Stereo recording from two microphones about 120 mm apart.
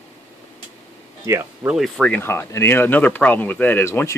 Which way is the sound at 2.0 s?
15° left (ahead or behind).